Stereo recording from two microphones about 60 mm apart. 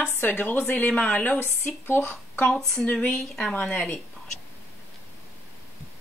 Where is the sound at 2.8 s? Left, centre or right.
Left.